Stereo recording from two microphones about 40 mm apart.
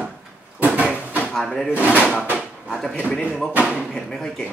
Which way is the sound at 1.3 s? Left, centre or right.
Centre.